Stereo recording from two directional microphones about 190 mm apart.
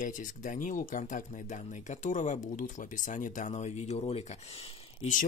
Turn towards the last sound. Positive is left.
turn(degrees=35)  # may be behind; listen again after turning